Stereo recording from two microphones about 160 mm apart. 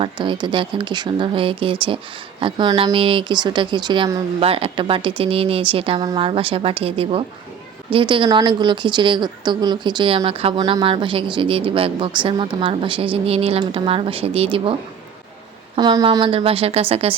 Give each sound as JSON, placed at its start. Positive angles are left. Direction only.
{"t": 0.0, "sound": "a woman's voice", "side_deg": -30}
{"t": 15.8, "sound": "speech", "side_deg": -25}